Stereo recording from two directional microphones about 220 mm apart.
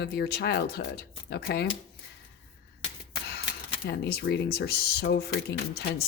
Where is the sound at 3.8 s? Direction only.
50° left (ahead or behind).